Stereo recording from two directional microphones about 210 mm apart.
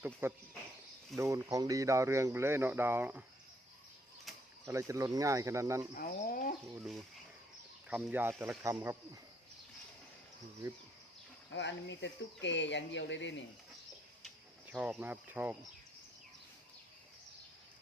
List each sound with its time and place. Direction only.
0.0 s speech: 10° right (ahead or behind)
4.3 s a sound: centre (ahead or behind)
4.6 s speech: 15° right (ahead or behind)
6.0 s speech: 40° left (ahead or behind)
6.7 s speech: centre (ahead or behind)
11.5 s speech: 60° left (ahead or behind)
14.7 s speech: 10° right (ahead or behind)